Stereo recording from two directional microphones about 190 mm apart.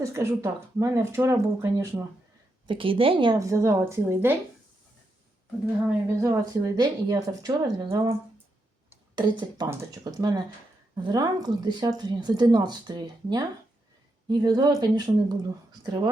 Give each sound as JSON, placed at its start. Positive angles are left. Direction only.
{"t": 0.0, "sound": "speech", "side_deg": -15}
{"t": 2.6, "sound": "speech", "side_deg": -25}
{"t": 6.1, "sound": "a woman's voice", "side_deg": -15}
{"t": 9.1, "sound": "a woman's voice", "side_deg": -20}